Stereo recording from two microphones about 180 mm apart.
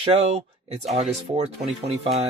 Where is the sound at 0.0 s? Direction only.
35° right (ahead or behind).